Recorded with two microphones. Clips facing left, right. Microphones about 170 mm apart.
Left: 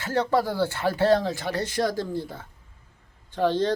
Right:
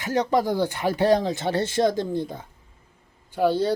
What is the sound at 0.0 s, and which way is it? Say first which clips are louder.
Speech: right 1 dB; 15° right (ahead or behind).